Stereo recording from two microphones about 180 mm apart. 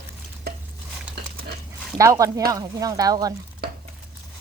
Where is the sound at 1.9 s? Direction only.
15° right (ahead or behind).